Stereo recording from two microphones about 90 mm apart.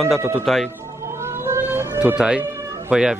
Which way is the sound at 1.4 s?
25° right (ahead or behind).